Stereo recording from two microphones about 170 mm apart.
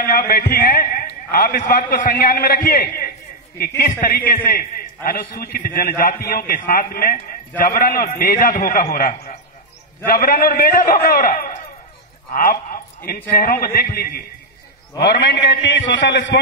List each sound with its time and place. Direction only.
0.3 s a man's voice: 60° left (ahead or behind)
9.1 s a sound: 40° left (ahead or behind)
10.0 s a man's voice: 60° left (ahead or behind)
15.0 s a man's voice: 75° left (ahead or behind)